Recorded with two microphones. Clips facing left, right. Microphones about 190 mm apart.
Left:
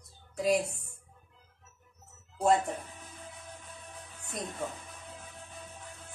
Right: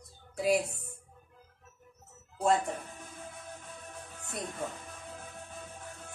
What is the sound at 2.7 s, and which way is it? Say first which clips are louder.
Music: even; 50° right (ahead or behind).